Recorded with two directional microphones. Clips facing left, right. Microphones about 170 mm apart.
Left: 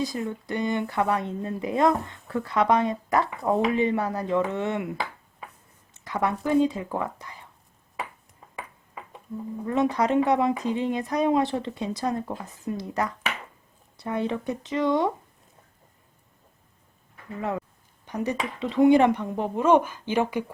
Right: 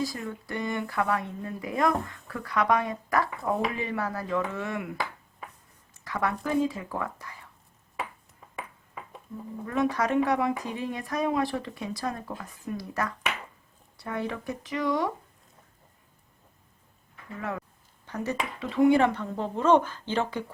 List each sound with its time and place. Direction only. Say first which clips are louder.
0.0 s speech: left 3 dB; 20° left (ahead or behind)
9.6 s speech: left 3 dB; 20° left (ahead or behind)
18.0 s speech: left 3 dB; 15° left (ahead or behind)